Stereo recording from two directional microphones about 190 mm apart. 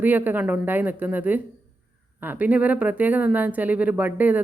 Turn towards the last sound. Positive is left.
turn(degrees=-10)  # may be behind; listen again after turning